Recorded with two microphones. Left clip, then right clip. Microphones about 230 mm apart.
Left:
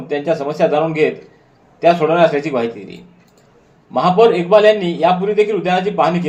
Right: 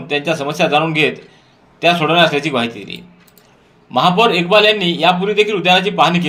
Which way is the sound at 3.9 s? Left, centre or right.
Right.